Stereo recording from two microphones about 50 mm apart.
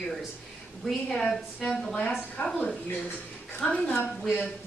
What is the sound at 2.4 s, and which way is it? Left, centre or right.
Speech, left.